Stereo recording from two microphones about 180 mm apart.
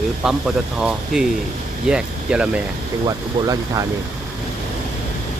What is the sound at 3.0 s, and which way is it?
Speech, 20° right (ahead or behind).